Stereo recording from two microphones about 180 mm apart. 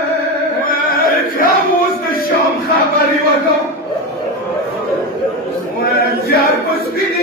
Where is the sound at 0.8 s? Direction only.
55° left (ahead or behind).